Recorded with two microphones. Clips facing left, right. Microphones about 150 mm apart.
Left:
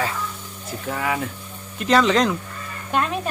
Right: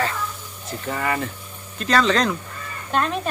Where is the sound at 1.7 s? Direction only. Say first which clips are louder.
Left 2 dB; 20° left (ahead or behind).